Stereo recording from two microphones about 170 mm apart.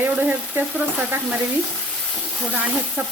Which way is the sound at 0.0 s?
10° right (ahead or behind).